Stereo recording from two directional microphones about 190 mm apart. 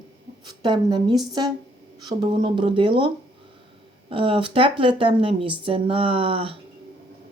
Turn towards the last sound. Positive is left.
turn(degrees=-30)  # may be behind; listen again after turning